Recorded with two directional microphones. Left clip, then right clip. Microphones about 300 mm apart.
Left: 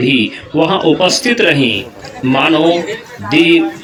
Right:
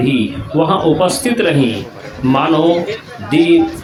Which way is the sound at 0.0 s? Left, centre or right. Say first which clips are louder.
Left 3 dB; right.